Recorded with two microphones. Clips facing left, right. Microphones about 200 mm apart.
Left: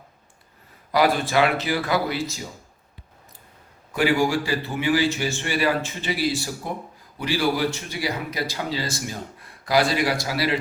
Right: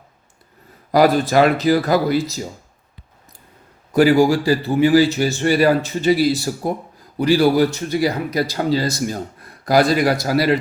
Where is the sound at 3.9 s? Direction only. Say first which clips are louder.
Right 8 dB; 40° right (ahead or behind).